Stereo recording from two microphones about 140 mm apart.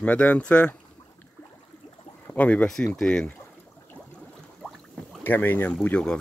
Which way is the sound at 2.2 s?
10° left (ahead or behind).